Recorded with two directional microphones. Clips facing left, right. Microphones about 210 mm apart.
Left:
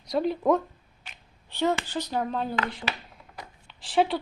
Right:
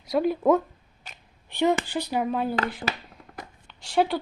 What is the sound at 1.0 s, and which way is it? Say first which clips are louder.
Camera: right 3 dB; 40° right (ahead or behind).